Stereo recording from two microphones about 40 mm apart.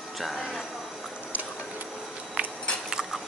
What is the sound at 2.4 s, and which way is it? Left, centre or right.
Biting, right.